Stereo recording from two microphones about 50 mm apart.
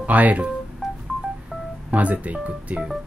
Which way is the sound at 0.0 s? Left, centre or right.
Right.